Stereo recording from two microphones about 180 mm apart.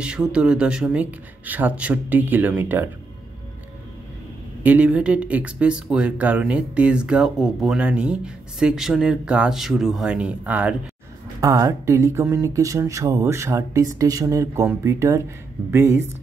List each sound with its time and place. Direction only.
0.0 s speech: 5° right (ahead or behind)
4.6 s speech: 10° right (ahead or behind)
11.4 s speech: 20° right (ahead or behind)